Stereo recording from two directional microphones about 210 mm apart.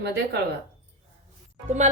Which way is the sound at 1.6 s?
35° right (ahead or behind).